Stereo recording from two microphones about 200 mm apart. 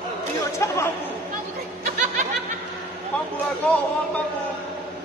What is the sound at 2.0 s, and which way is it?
Snicker, 40° right (ahead or behind).